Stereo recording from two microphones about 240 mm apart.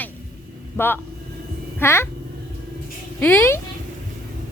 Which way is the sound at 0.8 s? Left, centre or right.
Centre.